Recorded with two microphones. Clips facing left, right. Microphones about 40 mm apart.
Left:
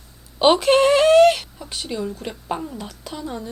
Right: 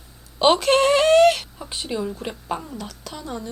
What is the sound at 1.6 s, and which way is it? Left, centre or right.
Speech, centre.